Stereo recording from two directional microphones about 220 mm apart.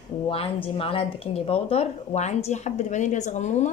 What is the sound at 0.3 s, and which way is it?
Speech, 25° left (ahead or behind).